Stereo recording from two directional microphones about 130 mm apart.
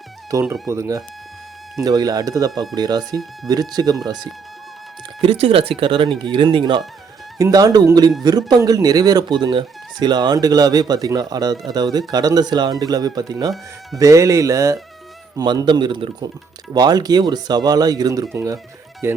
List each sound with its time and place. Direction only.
0.4 s speech: centre (ahead or behind)
0.7 s speech: 25° right (ahead or behind)
5.2 s speech: 45° right (ahead or behind); by 19.2 s 20° right (ahead or behind)